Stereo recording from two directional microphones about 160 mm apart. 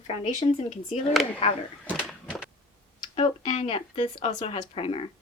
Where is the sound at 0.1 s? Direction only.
40° left (ahead or behind).